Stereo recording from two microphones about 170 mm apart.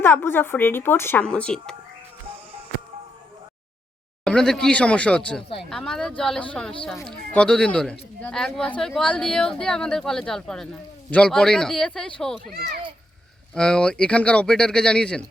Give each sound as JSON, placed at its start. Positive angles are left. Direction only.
{"t": 0.0, "sound": "a woman's voice", "side_deg": 15}
{"t": 4.2, "sound": "speech", "side_deg": 5}
{"t": 12.5, "sound": "a child's voice", "side_deg": -65}
{"t": 13.5, "sound": "speech", "side_deg": 5}